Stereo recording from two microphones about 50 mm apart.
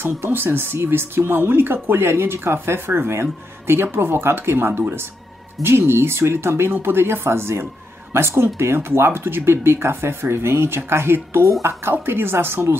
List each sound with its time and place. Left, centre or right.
0.0 s speech: right